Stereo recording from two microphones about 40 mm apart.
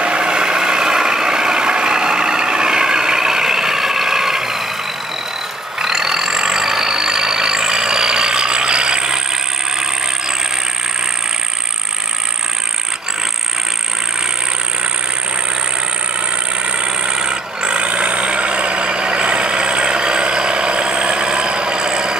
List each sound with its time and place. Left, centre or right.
0.0 s vehicle: right
5.8 s vehicle: centre
17.0 s vehicle: centre